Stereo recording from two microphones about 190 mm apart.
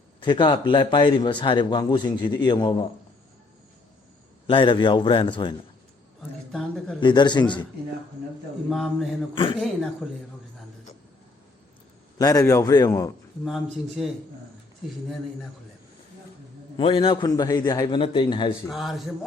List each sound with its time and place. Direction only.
0.2 s a man's voice: 25° left (ahead or behind)
4.4 s a man's voice: 25° left (ahead or behind)
6.5 s speech: 5° left (ahead or behind)
7.0 s a man's voice: 25° left (ahead or behind)
8.7 s speech: centre (ahead or behind)
9.3 s a man's voice: 25° left (ahead or behind)
12.2 s a man's voice: 20° left (ahead or behind)
13.4 s speech: centre (ahead or behind)
16.7 s a man's voice: 25° left (ahead or behind)
18.7 s speech: centre (ahead or behind)